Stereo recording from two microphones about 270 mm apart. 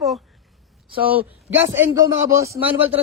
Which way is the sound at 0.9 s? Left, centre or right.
Centre.